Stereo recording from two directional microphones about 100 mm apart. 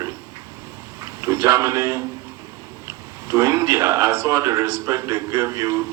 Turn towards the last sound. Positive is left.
turn(degrees=-30)  # may be behind; listen again after turning